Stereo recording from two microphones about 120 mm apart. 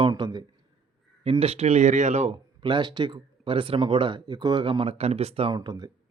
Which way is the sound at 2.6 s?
40° right (ahead or behind).